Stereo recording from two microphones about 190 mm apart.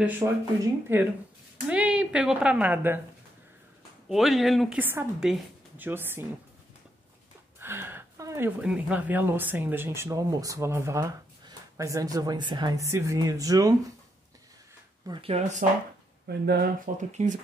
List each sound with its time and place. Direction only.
0.2 s a woman's voice: 15° right (ahead or behind)
4.1 s a woman's voice: centre (ahead or behind)
7.6 s speech: 10° right (ahead or behind)
15.0 s speech: 30° right (ahead or behind)
16.3 s speech: 55° right (ahead or behind)
17.2 s speech: 35° right (ahead or behind)